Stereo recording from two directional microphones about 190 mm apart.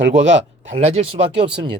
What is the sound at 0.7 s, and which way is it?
Speech, 35° right (ahead or behind).